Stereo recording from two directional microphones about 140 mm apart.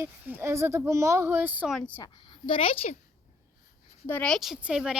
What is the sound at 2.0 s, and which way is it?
Speech, 40° left (ahead or behind).